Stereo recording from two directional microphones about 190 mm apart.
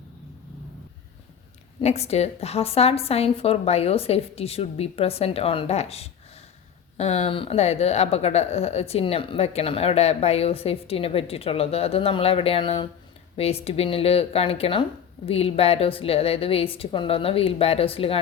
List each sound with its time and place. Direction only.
1.8 s a woman's voice: 35° left (ahead or behind)